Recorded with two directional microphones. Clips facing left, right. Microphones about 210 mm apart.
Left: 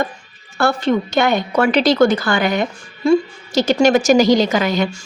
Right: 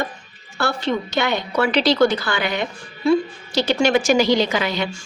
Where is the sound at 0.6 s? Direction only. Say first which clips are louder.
Left 5 dB; 50° left (ahead or behind).